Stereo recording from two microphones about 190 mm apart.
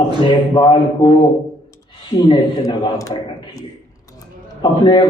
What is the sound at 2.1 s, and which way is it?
A man's voice, 20° left (ahead or behind).